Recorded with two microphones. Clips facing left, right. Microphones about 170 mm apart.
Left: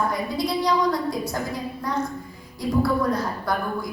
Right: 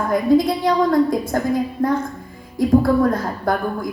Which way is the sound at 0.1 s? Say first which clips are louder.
Right 10 dB; 50° right (ahead or behind).